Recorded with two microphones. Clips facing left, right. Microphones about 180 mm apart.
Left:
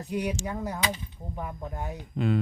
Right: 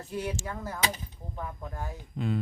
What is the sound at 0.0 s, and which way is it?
A man's voice, 15° left (ahead or behind).